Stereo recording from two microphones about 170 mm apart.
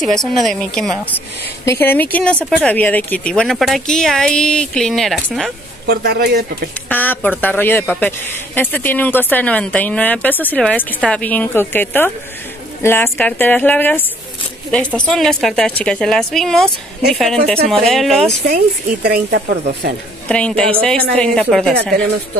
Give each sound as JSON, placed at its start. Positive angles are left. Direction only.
{"t": 0.1, "sound": "speech", "side_deg": 0}
{"t": 5.9, "sound": "a man's voice", "side_deg": -70}
{"t": 6.9, "sound": "speech", "side_deg": 10}
{"t": 19.0, "sound": "speech", "side_deg": -70}
{"t": 20.2, "sound": "speech", "side_deg": 5}